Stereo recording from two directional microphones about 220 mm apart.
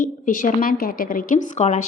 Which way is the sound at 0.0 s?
35° left (ahead or behind).